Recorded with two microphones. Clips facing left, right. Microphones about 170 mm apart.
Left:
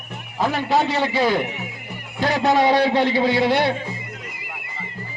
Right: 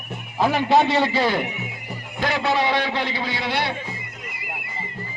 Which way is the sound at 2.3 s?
40° left (ahead or behind).